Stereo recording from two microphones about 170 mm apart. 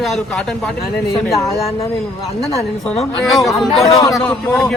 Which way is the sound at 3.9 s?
20° left (ahead or behind).